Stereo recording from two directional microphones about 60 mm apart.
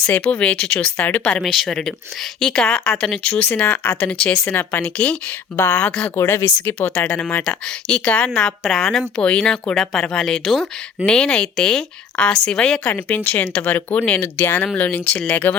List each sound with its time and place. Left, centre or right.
0.1 s speech: left
2.4 s speech: centre
3.3 s speech: left
5.5 s speech: left
7.4 s speech: centre
8.4 s speech: centre
12.8 s speech: left
14.2 s speech: left
14.8 s speech: left